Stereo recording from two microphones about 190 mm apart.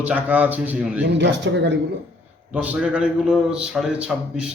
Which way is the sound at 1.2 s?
70° right (ahead or behind).